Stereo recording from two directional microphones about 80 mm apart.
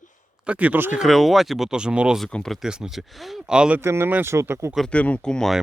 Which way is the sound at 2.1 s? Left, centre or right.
Centre.